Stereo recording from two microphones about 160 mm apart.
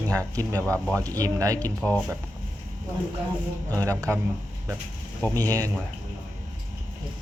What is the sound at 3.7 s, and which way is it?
Speech, 20° right (ahead or behind).